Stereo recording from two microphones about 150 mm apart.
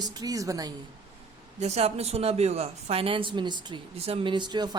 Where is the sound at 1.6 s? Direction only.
45° right (ahead or behind); by 4.8 s 30° right (ahead or behind).